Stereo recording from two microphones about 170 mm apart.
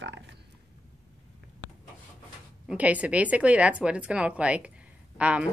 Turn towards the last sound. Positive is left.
turn(degrees=-5)  # may be behind; listen again after turning